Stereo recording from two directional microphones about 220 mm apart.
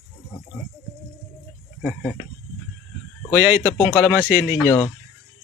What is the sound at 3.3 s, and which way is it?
Speech, 10° right (ahead or behind).